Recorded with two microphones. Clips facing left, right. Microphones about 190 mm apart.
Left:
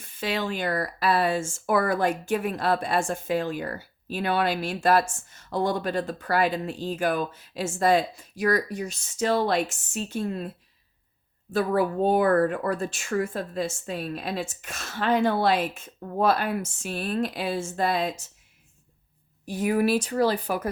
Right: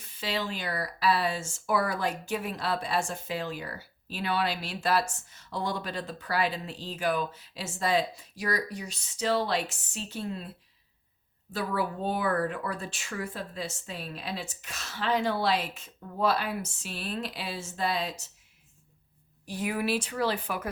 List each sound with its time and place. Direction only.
0.0 s speech: 50° left (ahead or behind)
11.5 s speech: 50° left (ahead or behind)
19.5 s speech: 45° left (ahead or behind)